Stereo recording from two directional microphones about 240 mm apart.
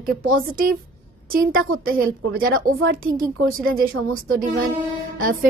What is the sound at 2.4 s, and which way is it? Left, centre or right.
Speech, right.